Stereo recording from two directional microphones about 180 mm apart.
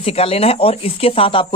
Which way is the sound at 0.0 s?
35° left (ahead or behind).